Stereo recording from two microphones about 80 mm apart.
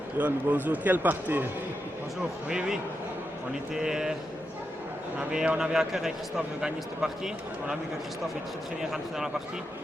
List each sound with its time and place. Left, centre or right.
0.2 s speech: right
2.5 s a man's voice: centre
3.8 s a man's voice: centre
5.3 s a man's voice: centre
8.8 s speech: centre